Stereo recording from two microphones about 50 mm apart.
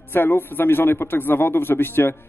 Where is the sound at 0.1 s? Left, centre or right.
Left.